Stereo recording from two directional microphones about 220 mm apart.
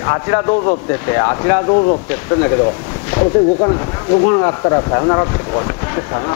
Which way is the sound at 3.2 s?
25° left (ahead or behind).